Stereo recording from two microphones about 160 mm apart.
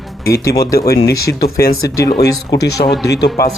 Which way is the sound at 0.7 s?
75° left (ahead or behind).